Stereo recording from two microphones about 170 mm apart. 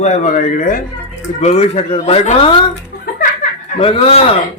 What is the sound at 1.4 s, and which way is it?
Speech, 40° left (ahead or behind).